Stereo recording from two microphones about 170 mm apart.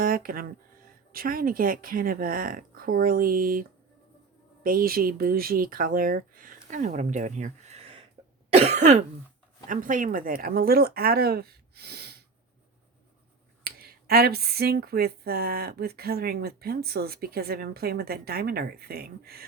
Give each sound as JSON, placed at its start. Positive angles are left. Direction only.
{"t": 0.0, "sound": "speech", "side_deg": -55}
{"t": 8.5, "sound": "cough", "side_deg": -40}
{"t": 9.6, "sound": "speech", "side_deg": -50}
{"t": 13.7, "sound": "speech", "side_deg": -65}